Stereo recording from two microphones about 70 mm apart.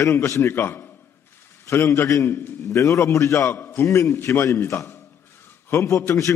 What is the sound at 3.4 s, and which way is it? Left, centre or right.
Speech, left.